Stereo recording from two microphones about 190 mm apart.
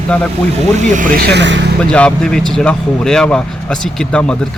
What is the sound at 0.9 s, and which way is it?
Speech, 50° right (ahead or behind).